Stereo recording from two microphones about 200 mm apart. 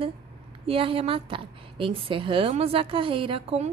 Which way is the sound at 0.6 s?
25° right (ahead or behind).